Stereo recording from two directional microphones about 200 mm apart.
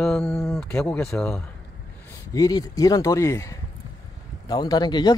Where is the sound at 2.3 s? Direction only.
15° left (ahead or behind).